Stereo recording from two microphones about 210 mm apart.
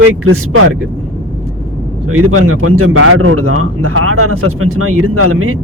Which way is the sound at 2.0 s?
90° right.